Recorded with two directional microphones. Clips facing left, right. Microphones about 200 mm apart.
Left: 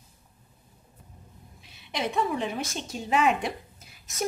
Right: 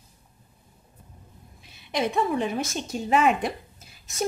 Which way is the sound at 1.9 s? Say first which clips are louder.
Right 3 dB; 50° right (ahead or behind).